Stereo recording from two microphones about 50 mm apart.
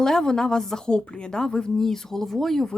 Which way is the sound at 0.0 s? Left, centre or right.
Centre.